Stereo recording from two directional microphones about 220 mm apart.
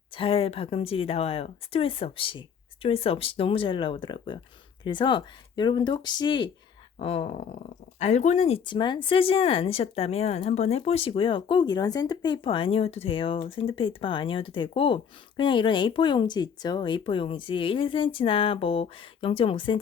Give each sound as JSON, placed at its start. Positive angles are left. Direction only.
{"t": 0.1, "sound": "speech", "side_deg": 25}